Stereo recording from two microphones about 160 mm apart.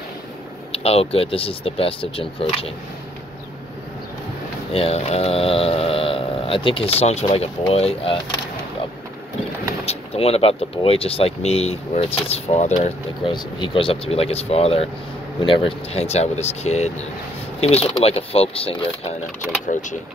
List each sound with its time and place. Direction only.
0.7 s speech: 35° left (ahead or behind)
4.7 s speech: 40° left (ahead or behind)
9.8 s speech: 40° left (ahead or behind)
13.3 s speech: 30° left (ahead or behind)